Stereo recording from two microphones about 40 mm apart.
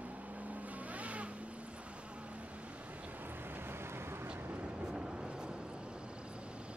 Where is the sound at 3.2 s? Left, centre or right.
Right.